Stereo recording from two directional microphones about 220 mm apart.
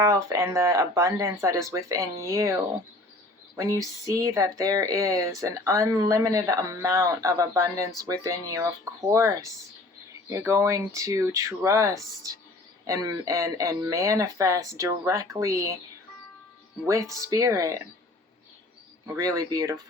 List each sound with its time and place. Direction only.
0.0 s speech: 15° right (ahead or behind)
3.5 s a sound: 15° right (ahead or behind)
4.1 s speech: 15° right (ahead or behind)
16.8 s speech: 15° right (ahead or behind)
19.0 s speech: 15° right (ahead or behind)